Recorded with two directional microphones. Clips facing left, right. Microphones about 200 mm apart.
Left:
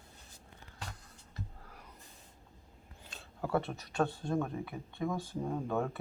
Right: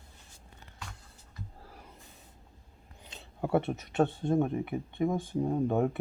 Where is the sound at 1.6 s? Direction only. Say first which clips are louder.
Right 3 dB; 30° right (ahead or behind).